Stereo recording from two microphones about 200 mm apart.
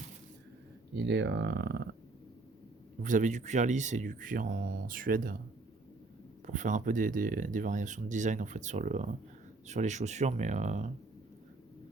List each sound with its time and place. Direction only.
0.9 s speech: 60° right (ahead or behind)
3.0 s speech: 40° right (ahead or behind)
6.4 s speech: 40° right (ahead or behind)